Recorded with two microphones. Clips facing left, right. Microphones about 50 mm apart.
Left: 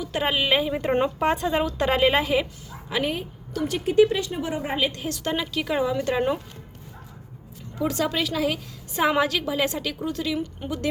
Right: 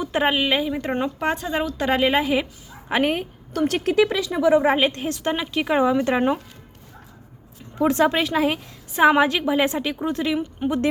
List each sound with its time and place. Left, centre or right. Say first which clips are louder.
0.0 s a sound: right 5 dB; right
0.3 s a woman's voice: left 1 dB; centre
2.9 s a woman's voice: right 5 dB; right
3.8 s speech: left 3 dB; right
4.8 s a woman's voice: right 4 dB; right
5.0 s a woman's voice: right 3 dB; right
7.8 s a woman's voice: right 6 dB; right